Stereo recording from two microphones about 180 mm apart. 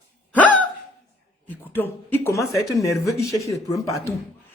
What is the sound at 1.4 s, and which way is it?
Speech, 10° left (ahead or behind).